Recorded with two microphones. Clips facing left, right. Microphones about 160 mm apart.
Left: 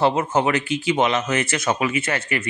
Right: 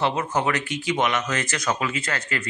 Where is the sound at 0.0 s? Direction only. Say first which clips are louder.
Left 4 dB; 25° left (ahead or behind).